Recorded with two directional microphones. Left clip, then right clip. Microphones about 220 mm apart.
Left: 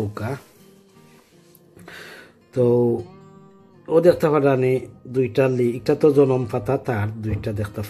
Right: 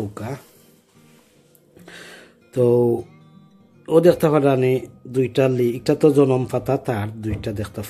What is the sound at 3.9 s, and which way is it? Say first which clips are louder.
Speech: right 1 dB; 10° right (ahead or behind).